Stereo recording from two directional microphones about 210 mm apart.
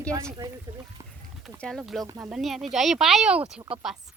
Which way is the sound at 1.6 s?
Centre (ahead or behind).